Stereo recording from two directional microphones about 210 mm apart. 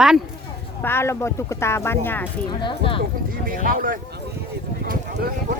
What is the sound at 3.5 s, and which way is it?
Speech, 40° right (ahead or behind).